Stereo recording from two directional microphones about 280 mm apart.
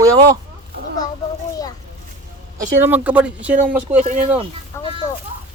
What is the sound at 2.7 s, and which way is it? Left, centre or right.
Speech, centre.